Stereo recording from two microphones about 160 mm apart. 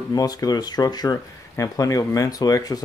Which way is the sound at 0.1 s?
25° left (ahead or behind).